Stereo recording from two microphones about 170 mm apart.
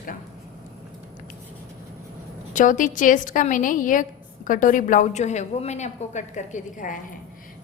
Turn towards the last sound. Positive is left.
turn(degrees=50)  # may be behind; listen again after turning